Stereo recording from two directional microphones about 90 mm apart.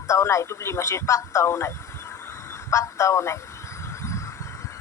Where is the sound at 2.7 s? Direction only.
35° left (ahead or behind).